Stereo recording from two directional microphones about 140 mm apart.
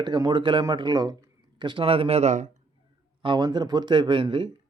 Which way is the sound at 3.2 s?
35° right (ahead or behind).